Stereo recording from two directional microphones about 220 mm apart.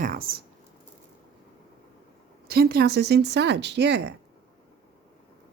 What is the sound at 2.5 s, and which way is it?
Speech, 45° right (ahead or behind).